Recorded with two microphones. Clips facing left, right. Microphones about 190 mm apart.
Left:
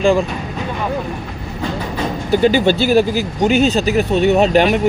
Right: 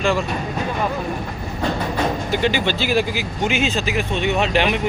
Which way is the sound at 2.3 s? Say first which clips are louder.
Left 11 dB; 40° left (ahead or behind).